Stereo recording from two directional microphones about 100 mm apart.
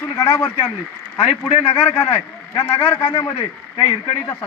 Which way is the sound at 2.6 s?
20° left (ahead or behind).